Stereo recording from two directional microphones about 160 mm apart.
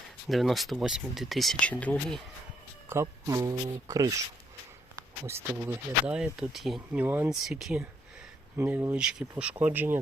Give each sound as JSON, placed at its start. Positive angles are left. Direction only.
{"t": 0.3, "sound": "speech", "side_deg": 0}
{"t": 2.9, "sound": "speech", "side_deg": -20}
{"t": 5.2, "sound": "speech", "side_deg": -15}